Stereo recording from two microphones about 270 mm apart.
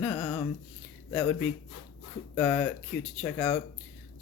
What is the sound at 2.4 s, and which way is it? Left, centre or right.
Speech, centre.